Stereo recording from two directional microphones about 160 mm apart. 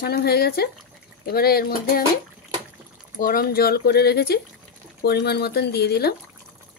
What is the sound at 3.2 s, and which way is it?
Speech, 65° left (ahead or behind).